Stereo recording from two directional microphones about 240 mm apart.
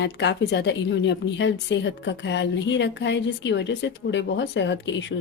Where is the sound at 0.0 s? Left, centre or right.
Left.